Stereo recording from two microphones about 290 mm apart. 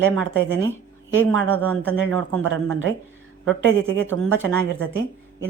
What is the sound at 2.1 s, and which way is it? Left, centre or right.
Speech, right.